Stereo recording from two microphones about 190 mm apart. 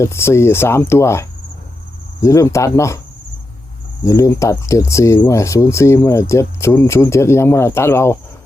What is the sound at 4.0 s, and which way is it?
Speech, 15° left (ahead or behind).